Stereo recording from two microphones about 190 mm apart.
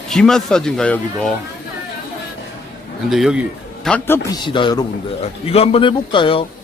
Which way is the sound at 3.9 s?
10° left (ahead or behind).